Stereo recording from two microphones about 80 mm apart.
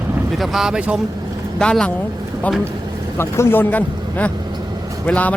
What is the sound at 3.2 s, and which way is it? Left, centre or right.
Speech, left.